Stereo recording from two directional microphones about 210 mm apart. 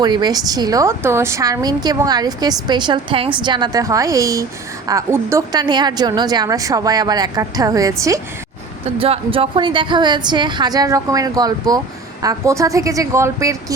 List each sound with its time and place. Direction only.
0.0 s a woman's voice: 20° right (ahead or behind)
9.0 s a woman's voice: 25° right (ahead or behind)